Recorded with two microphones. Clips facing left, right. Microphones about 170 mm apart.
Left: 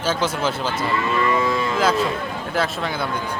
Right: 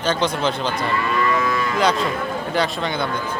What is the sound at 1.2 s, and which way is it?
Moo, 25° left (ahead or behind).